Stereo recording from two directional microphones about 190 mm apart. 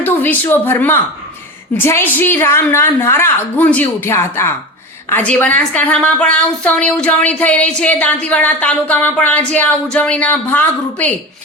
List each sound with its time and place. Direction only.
0.0 s a woman's voice: 10° left (ahead or behind)